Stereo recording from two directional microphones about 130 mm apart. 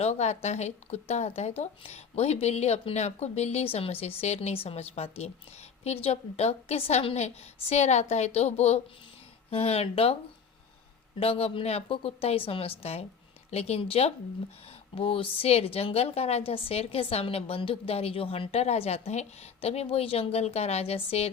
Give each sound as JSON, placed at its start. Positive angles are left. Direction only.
{"t": 0.0, "sound": "a woman's voice", "side_deg": 60}
{"t": 11.2, "sound": "a woman's voice", "side_deg": 50}